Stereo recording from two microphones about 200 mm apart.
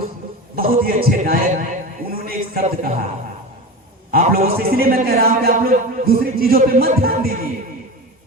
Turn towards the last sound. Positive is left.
turn(degrees=-50)  # may be behind; listen again after turning